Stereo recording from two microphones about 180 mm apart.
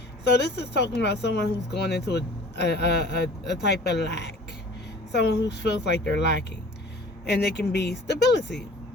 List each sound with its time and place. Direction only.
0.3 s speech: 70° left (ahead or behind)